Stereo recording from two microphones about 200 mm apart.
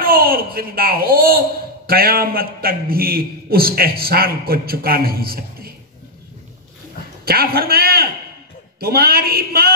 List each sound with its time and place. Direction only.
0.0 s a man's voice: 50° right (ahead or behind)
7.2 s a man's voice: 50° right (ahead or behind)